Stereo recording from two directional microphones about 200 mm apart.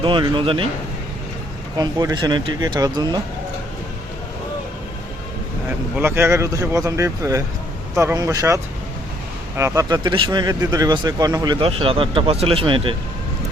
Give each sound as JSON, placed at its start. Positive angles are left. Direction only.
{"t": 0.0, "sound": "speech", "side_deg": -25}
{"t": 1.8, "sound": "speech", "side_deg": -20}
{"t": 6.0, "sound": "speech", "side_deg": -10}